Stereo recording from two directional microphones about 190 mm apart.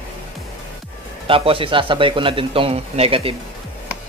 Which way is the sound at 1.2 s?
30° right (ahead or behind).